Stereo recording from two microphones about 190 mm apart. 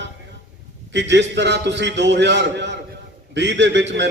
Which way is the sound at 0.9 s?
65° right (ahead or behind).